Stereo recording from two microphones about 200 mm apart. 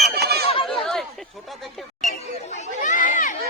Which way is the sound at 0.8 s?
Centre (ahead or behind).